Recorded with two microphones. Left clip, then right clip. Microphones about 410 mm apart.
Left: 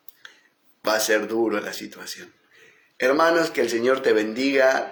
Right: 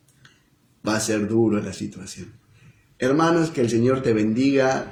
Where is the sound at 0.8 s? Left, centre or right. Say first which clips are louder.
Left 3 dB; centre.